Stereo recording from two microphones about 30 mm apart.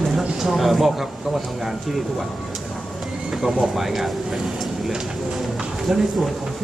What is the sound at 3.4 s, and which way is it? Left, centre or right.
Speech, centre.